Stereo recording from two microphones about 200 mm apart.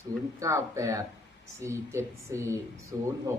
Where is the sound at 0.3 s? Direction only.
15° right (ahead or behind).